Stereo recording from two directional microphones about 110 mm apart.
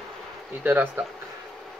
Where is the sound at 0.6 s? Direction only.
15° right (ahead or behind).